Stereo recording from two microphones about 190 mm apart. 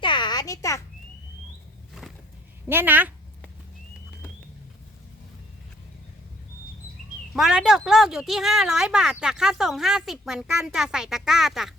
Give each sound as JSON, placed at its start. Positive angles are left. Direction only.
{"t": 0.0, "sound": "a sound", "side_deg": 25}
{"t": 2.6, "sound": "a woman's voice", "side_deg": -10}
{"t": 7.3, "sound": "speech", "side_deg": 0}